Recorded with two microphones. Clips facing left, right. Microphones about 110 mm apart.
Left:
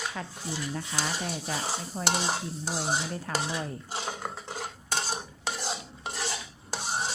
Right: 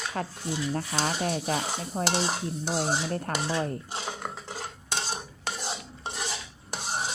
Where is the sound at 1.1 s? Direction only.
55° right (ahead or behind).